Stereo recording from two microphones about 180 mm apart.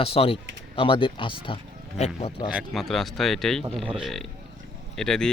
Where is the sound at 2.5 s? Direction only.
Centre (ahead or behind).